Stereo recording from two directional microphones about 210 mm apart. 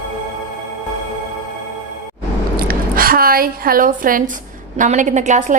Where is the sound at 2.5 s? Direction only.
45° right (ahead or behind).